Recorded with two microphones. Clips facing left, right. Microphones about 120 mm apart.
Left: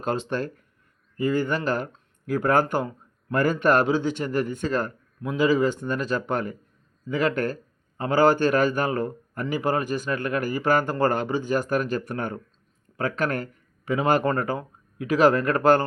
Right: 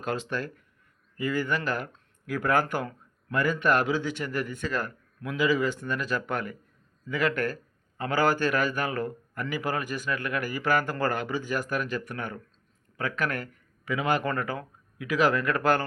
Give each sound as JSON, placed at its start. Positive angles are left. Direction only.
{"t": 0.0, "sound": "a man's voice", "side_deg": 30}
{"t": 3.3, "sound": "a man's voice", "side_deg": 40}